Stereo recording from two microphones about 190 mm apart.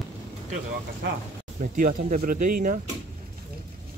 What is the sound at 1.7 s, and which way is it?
Speech, 45° right (ahead or behind).